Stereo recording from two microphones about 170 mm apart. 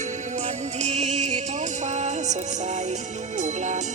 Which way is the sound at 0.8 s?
45° right (ahead or behind).